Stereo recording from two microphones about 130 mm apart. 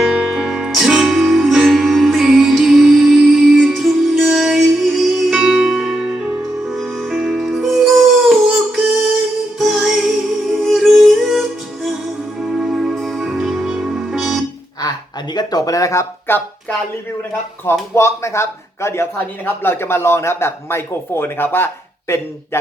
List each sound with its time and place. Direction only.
0.0 s music: 5° right (ahead or behind)
14.8 s a sound: 30° left (ahead or behind)
17.7 s speech: 20° left (ahead or behind)